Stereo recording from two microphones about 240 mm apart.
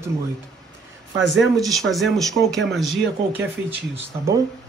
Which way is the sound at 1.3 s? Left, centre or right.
Centre.